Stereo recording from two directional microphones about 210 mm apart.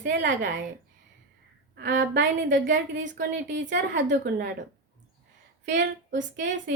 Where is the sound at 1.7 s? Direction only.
55° right (ahead or behind).